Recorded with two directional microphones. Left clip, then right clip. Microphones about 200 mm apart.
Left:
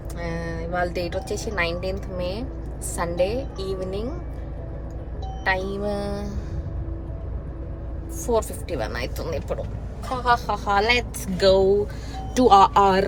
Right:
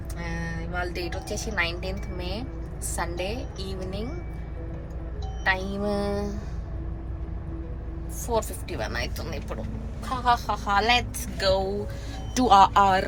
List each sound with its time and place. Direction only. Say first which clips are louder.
0.2 s speech: left 5 dB; 15° left (ahead or behind)
5.5 s speech: left 2 dB; 5° left (ahead or behind)
8.3 s speech: left 4 dB; 10° left (ahead or behind)